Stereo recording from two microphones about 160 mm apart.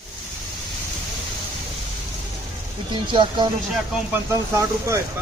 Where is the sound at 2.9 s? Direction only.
30° right (ahead or behind).